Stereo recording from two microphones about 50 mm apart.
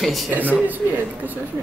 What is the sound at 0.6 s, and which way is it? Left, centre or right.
Speech, right.